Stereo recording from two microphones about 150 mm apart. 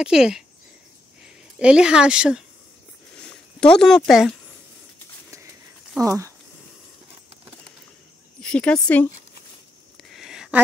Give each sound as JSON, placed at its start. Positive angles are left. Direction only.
{"t": 0.0, "sound": "speech", "side_deg": -5}
{"t": 3.2, "sound": "speech", "side_deg": 5}
{"t": 5.9, "sound": "speech", "side_deg": -20}
{"t": 8.4, "sound": "a sound", "side_deg": 5}
{"t": 8.8, "sound": "speech", "side_deg": 10}
{"t": 9.9, "sound": "a sound", "side_deg": 0}